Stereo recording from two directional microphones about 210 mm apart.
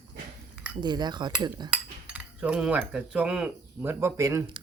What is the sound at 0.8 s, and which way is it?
Speech, 20° right (ahead or behind).